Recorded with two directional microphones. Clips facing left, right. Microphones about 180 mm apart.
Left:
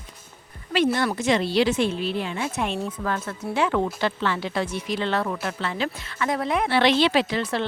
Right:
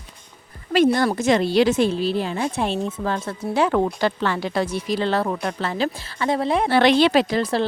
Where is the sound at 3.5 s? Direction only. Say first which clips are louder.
Right 4 dB; 40° right (ahead or behind).